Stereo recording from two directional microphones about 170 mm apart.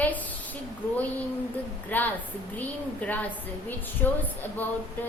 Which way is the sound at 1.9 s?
10° left (ahead or behind).